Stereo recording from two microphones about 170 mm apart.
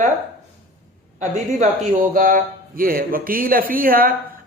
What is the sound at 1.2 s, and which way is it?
Speech, 45° right (ahead or behind).